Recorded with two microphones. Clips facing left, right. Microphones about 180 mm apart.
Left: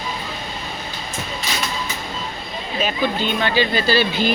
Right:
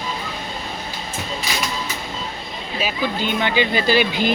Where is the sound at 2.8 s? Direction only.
10° right (ahead or behind).